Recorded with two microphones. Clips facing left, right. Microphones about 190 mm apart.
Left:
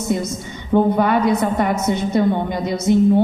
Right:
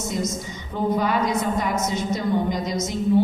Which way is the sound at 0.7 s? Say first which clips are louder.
Left 7 dB; 60° left (ahead or behind).